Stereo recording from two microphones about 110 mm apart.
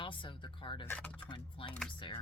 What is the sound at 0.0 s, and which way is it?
Music, 45° left (ahead or behind).